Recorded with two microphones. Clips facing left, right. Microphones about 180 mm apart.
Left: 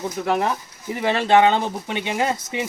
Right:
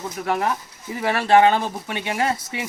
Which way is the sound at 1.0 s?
20° left (ahead or behind).